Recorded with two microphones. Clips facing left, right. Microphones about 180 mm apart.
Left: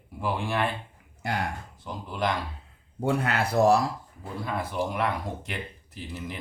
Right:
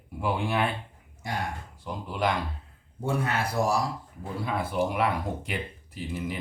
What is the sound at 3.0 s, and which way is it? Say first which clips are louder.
Speech: left 2 dB; 65° left (ahead or behind).